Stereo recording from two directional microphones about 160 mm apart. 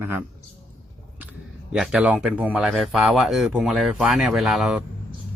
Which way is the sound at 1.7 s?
5° right (ahead or behind).